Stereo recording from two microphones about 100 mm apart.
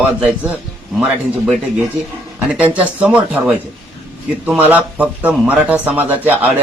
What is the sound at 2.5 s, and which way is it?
Speech, 15° right (ahead or behind).